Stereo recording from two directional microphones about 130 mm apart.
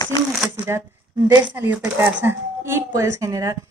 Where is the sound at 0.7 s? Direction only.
20° right (ahead or behind).